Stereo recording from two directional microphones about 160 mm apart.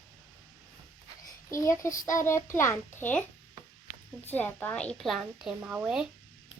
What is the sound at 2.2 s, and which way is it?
Speech, 15° left (ahead or behind).